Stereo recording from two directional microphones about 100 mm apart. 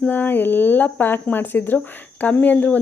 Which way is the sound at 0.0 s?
20° left (ahead or behind).